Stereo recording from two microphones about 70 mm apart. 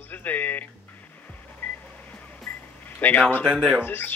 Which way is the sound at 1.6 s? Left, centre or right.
Left.